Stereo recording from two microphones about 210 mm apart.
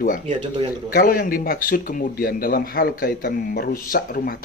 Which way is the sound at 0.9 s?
45° left (ahead or behind).